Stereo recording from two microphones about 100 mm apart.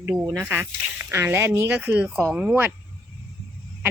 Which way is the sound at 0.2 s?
20° right (ahead or behind).